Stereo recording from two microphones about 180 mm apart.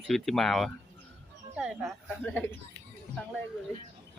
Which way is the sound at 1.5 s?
5° right (ahead or behind).